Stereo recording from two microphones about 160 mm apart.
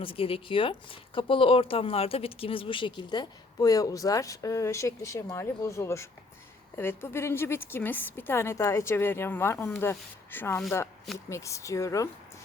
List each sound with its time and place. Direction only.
0.0 s a woman's voice: 35° left (ahead or behind); by 12.0 s 20° left (ahead or behind)